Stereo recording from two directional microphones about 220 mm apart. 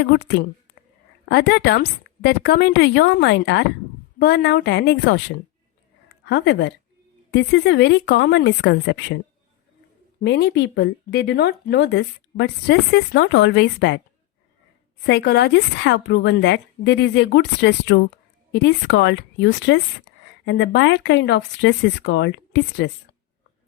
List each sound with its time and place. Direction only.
0.0 s speech: 50° left (ahead or behind)
10.2 s speech: 50° left (ahead or behind)
15.0 s speech: 50° left (ahead or behind)